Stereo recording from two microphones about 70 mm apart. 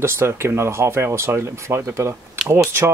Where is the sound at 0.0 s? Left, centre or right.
Right.